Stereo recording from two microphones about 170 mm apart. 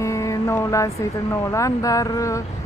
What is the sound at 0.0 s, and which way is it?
Mantra, 20° left (ahead or behind).